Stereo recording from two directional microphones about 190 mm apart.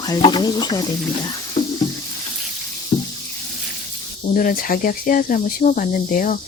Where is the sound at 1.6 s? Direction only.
25° left (ahead or behind).